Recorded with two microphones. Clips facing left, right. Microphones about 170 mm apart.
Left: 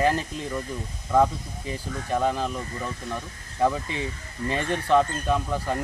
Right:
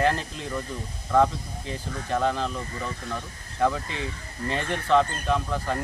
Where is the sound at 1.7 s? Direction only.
10° left (ahead or behind).